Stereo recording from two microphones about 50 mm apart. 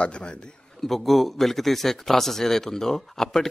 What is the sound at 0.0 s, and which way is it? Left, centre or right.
Speech, centre.